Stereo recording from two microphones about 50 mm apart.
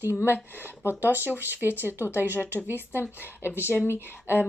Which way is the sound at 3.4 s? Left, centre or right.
Left.